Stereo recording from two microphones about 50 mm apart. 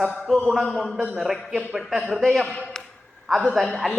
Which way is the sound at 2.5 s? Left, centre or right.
Centre.